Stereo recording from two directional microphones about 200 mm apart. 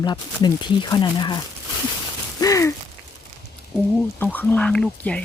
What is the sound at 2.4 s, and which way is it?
Gasp, 15° left (ahead or behind).